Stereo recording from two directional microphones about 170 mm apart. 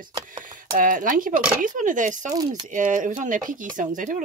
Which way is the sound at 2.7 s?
50° right (ahead or behind).